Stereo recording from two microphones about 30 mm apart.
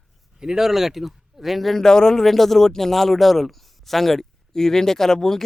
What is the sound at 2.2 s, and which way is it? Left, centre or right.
A man's voice, centre.